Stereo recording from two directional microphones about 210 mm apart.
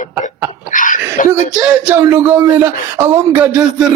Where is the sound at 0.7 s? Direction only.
40° left (ahead or behind).